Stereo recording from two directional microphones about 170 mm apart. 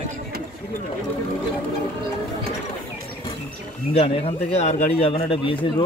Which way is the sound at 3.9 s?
35° left (ahead or behind).